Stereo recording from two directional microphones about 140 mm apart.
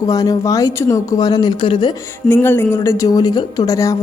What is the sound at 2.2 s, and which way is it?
Speech, 15° left (ahead or behind).